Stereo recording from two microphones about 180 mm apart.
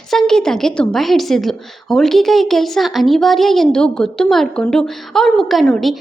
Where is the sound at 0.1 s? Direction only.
5° left (ahead or behind).